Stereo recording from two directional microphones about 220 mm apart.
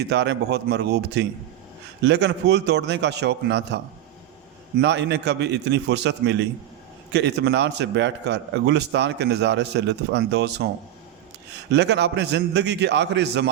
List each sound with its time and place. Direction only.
0.0 s a man's voice: 50° right (ahead or behind)
4.8 s a man's voice: 50° right (ahead or behind)
11.7 s a man's voice: 50° right (ahead or behind)